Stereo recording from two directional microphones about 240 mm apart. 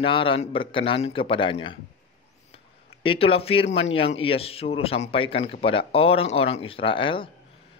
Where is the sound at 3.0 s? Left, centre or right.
Left.